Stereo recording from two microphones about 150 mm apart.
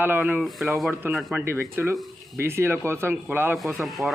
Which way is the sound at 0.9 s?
15° right (ahead or behind).